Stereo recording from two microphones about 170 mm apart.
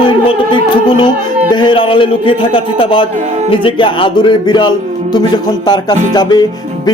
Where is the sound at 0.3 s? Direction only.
30° left (ahead or behind).